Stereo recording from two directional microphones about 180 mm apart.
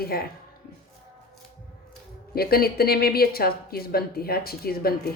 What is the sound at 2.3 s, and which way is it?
Speech, 55° left (ahead or behind).